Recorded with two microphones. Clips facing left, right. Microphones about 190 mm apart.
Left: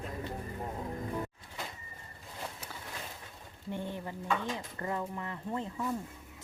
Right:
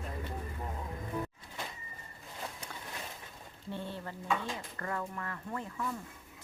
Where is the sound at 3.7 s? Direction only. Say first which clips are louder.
Left 2 dB; 15° left (ahead or behind).